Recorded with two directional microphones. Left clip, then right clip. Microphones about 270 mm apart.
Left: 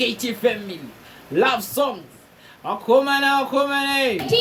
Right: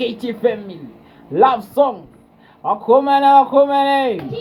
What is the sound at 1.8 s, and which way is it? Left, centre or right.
Speech, centre.